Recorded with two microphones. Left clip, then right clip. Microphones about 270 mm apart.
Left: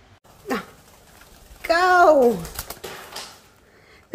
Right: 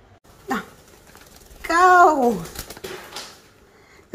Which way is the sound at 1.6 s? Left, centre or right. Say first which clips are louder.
Right 2 dB; centre.